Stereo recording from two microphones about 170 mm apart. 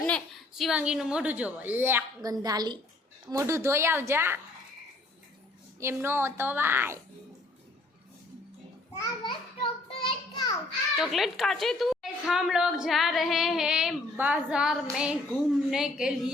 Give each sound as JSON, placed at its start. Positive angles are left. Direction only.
{"t": 0.1, "sound": "a woman's voice", "side_deg": 0}
{"t": 5.8, "sound": "a woman's voice", "side_deg": -15}
{"t": 8.9, "sound": "a sound", "side_deg": 25}
{"t": 10.9, "sound": "a woman's voice", "side_deg": 0}